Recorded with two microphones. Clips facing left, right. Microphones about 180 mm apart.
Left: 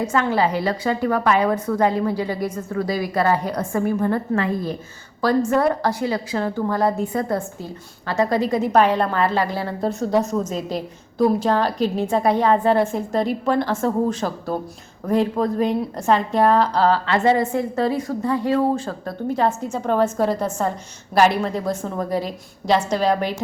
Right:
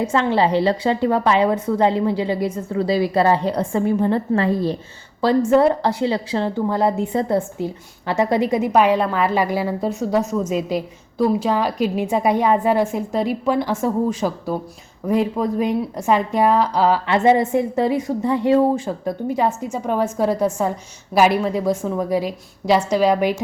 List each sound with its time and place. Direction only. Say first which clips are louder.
0.0 s a woman's voice: right 2 dB; 30° right (ahead or behind)
8.7 s a woman's voice: even; 10° right (ahead or behind)